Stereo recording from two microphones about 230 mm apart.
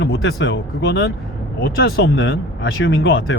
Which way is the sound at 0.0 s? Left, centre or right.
Left.